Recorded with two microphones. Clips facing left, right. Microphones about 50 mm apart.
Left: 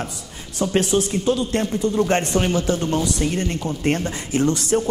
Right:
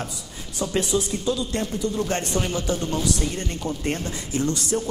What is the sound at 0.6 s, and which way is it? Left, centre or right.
Speech, left.